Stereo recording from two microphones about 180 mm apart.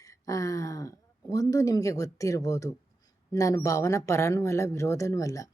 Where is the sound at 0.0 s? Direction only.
20° left (ahead or behind).